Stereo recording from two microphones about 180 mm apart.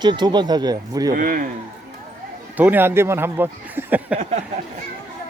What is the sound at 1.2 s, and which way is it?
Speech, 50° right (ahead or behind).